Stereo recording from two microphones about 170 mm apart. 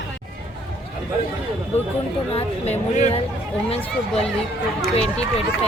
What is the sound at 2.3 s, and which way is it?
Speech, 40° left (ahead or behind).